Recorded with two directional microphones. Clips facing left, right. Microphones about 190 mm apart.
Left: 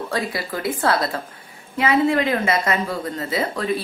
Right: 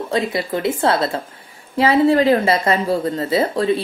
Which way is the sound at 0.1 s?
25° right (ahead or behind).